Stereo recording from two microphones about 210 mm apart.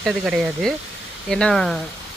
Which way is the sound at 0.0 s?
Centre (ahead or behind).